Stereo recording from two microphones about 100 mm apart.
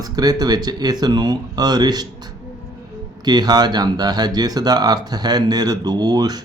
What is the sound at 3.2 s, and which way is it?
Speech, 45° right (ahead or behind).